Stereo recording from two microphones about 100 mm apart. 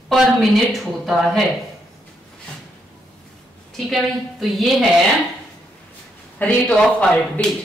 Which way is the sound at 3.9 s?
Centre (ahead or behind).